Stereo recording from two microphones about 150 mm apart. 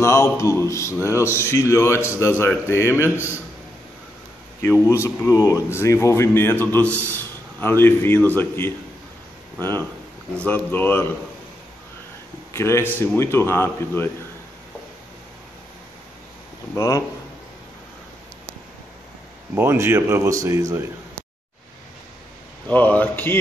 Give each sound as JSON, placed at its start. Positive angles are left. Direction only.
{"t": 0.0, "sound": "mantra", "side_deg": 20}
{"t": 1.0, "sound": "a man's voice", "side_deg": 20}
{"t": 4.6, "sound": "a man's voice", "side_deg": 15}
{"t": 12.5, "sound": "a man's voice", "side_deg": 20}
{"t": 16.7, "sound": "mantra", "side_deg": 20}
{"t": 19.5, "sound": "speech", "side_deg": -15}
{"t": 22.7, "sound": "a man's voice", "side_deg": 10}